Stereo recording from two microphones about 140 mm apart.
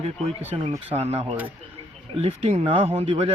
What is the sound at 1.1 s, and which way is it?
Speech, 40° right (ahead or behind).